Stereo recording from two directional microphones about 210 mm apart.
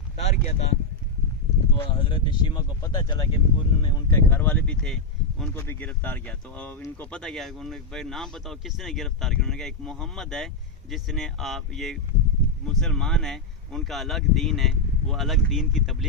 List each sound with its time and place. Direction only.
0.2 s a sound: 35° left (ahead or behind)
1.8 s speech: 25° left (ahead or behind)
4.1 s speech: 10° left (ahead or behind)